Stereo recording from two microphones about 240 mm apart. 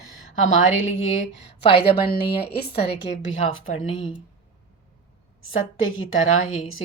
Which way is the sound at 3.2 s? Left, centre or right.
Left.